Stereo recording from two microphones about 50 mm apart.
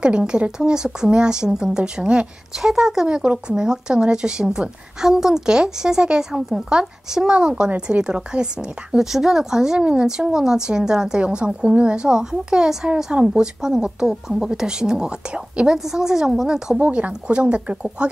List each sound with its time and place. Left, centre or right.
0.4 s speech: centre
16.8 s speech: right